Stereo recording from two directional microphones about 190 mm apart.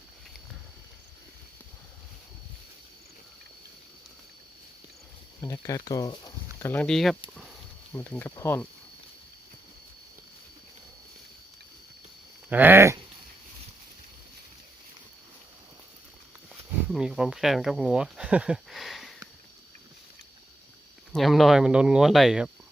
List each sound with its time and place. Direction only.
5.4 s speech: 20° left (ahead or behind)
12.5 s speech: 10° right (ahead or behind)
16.9 s speech: 5° right (ahead or behind)
21.1 s speech: centre (ahead or behind)